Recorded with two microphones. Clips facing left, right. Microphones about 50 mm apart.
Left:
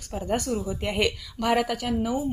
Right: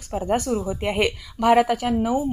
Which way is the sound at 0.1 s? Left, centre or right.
Right.